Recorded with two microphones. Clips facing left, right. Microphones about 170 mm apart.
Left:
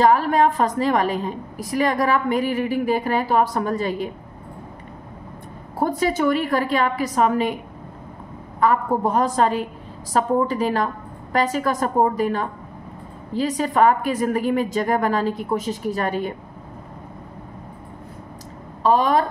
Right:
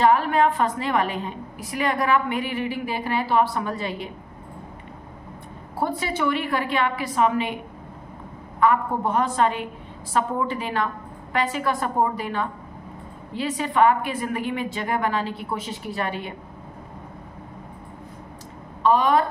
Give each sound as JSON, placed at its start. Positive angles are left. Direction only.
{"t": 0.0, "sound": "a woman's voice", "side_deg": 40}
{"t": 5.8, "sound": "a woman's voice", "side_deg": 45}
{"t": 8.5, "sound": "a woman's voice", "side_deg": 40}
{"t": 18.8, "sound": "a woman's voice", "side_deg": 35}